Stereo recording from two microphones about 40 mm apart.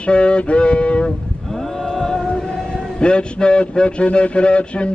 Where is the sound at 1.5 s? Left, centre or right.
Centre.